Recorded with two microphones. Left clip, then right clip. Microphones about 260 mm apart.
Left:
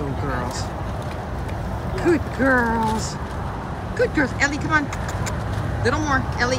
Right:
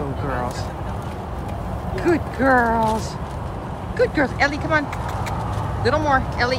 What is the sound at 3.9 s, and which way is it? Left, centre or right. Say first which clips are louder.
Speech: right 2 dB; centre.